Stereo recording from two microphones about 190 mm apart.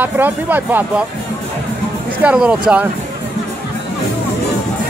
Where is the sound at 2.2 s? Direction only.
5° right (ahead or behind).